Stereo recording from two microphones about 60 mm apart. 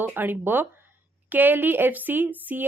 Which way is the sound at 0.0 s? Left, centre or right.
Right.